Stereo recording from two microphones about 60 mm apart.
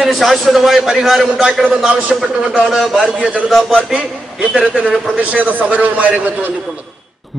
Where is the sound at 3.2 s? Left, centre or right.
Right.